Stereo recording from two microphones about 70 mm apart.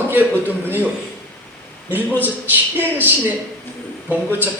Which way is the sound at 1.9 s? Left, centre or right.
Right.